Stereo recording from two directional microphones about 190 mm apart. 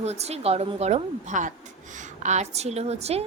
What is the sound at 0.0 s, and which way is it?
A woman's voice, 35° right (ahead or behind).